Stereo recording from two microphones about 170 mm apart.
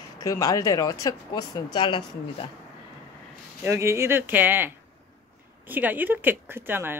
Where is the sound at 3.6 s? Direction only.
15° right (ahead or behind).